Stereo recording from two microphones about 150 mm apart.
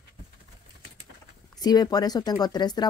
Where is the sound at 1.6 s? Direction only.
25° left (ahead or behind).